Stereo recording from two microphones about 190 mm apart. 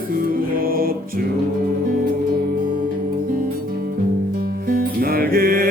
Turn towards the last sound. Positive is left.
turn(degrees=-50)  # may be behind; listen again after turning